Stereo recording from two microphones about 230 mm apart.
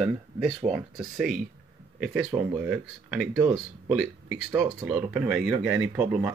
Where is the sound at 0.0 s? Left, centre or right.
Centre.